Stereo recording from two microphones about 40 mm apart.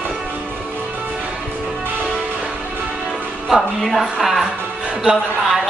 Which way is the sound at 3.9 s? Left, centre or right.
Centre.